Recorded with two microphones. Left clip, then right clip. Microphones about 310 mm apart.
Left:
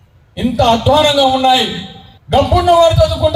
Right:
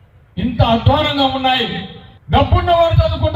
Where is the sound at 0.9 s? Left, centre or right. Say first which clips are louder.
Left 5 dB; left.